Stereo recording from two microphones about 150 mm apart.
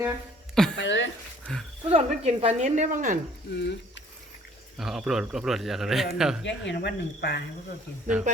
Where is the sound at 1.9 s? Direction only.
45° right (ahead or behind).